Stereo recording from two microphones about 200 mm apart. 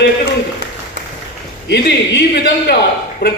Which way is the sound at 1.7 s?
60° left (ahead or behind).